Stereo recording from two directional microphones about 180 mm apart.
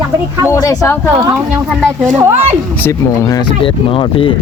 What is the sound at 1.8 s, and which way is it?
Speech, 15° right (ahead or behind).